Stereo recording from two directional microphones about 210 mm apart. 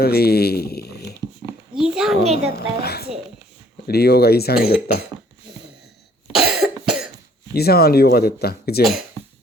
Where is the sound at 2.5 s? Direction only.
50° left (ahead or behind).